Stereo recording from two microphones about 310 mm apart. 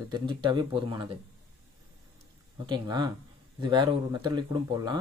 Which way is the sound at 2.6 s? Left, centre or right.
Centre.